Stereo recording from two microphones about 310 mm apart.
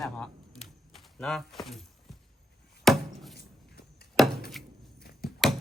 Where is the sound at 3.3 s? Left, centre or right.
Left.